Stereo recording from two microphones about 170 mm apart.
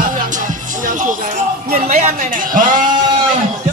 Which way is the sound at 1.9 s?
50° right (ahead or behind).